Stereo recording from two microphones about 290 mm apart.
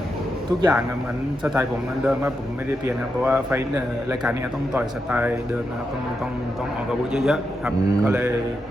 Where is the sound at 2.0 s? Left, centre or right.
Centre.